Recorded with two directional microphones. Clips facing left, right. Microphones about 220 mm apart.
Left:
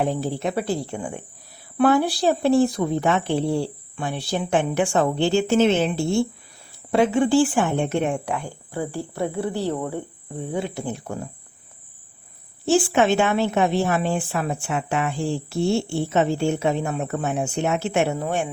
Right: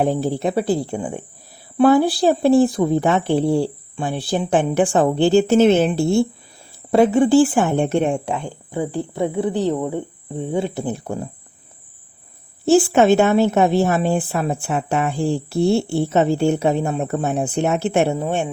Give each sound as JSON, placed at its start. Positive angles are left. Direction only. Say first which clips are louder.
{"t": 0.0, "sound": "a woman's voice", "louder": "right 4 dB", "side_deg": -40}
{"t": 12.6, "sound": "a woman's voice", "louder": "right 5 dB", "side_deg": -40}